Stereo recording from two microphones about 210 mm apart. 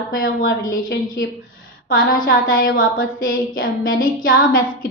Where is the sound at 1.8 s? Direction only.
45° left (ahead or behind).